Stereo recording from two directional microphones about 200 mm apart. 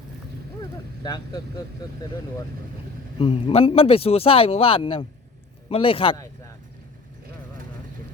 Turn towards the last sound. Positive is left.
turn(degrees=25)  # may be behind; listen again after turning